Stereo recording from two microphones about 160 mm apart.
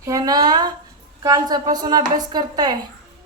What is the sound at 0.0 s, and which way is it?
A woman's voice, 20° right (ahead or behind).